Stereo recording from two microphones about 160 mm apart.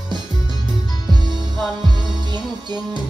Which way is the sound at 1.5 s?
Centre (ahead or behind).